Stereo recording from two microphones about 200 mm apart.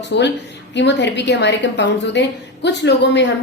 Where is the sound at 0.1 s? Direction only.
60° left (ahead or behind).